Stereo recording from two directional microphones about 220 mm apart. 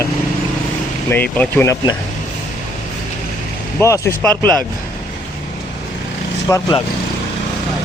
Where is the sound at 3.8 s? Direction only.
15° left (ahead or behind).